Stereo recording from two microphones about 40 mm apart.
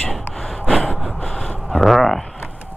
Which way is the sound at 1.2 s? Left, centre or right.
Centre.